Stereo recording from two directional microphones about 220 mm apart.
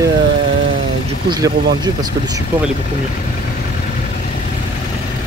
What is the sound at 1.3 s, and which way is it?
Speech, 20° right (ahead or behind).